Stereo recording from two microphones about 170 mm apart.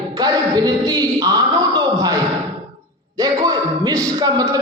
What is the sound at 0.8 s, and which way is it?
Speech, 20° right (ahead or behind).